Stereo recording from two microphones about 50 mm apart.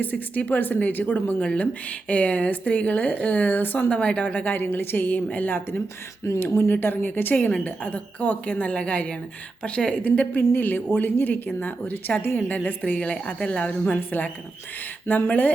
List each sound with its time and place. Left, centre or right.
0.0 s a woman's voice: left
1.4 s a woman's voice: left
3.8 s a woman's voice: left
4.5 s a woman's voice: left
6.4 s a woman's voice: left
10.3 s a woman's voice: left